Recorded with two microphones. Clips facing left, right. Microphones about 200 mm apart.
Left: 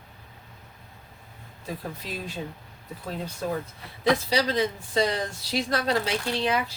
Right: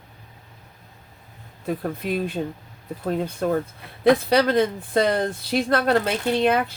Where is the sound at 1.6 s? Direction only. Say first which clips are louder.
Right 9 dB; 55° right (ahead or behind).